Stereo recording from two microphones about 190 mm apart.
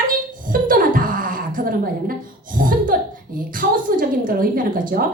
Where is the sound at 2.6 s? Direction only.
45° right (ahead or behind).